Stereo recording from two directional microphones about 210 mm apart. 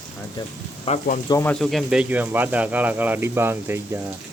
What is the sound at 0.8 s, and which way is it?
Speech, 30° left (ahead or behind).